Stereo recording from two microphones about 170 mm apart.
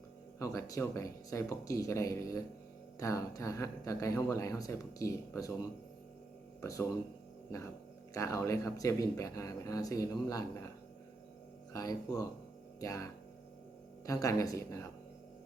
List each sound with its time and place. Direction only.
0.3 s speech: 20° left (ahead or behind)
6.6 s speech: 20° left (ahead or behind)
8.1 s speech: 20° left (ahead or behind)
11.7 s speech: 20° left (ahead or behind)